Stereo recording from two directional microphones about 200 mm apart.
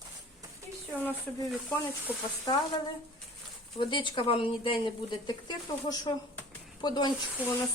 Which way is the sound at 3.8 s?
25° left (ahead or behind).